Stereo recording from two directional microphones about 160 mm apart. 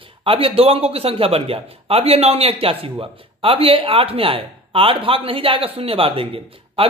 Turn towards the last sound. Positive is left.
turn(degrees=-35)  # may be behind; listen again after turning